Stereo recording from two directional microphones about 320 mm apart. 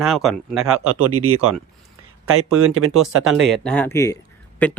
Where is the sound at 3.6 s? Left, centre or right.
Centre.